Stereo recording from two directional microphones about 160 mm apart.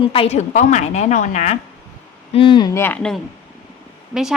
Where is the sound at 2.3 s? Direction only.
30° left (ahead or behind).